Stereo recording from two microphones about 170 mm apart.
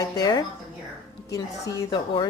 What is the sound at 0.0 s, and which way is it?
A woman's voice, 20° left (ahead or behind).